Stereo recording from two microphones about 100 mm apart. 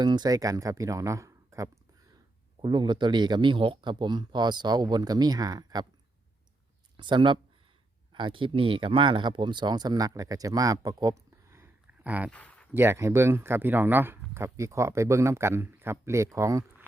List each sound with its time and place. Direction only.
0.0 s speech: 45° right (ahead or behind)
2.6 s speech: 50° right (ahead or behind)
6.9 s speech: 55° right (ahead or behind); by 11.7 s 25° right (ahead or behind)
12.0 s speech: 15° right (ahead or behind)
12.3 s a sound: 15° left (ahead or behind)
12.7 s speech: 25° right (ahead or behind)